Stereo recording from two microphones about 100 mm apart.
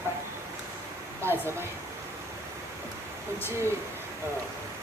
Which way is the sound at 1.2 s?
25° right (ahead or behind).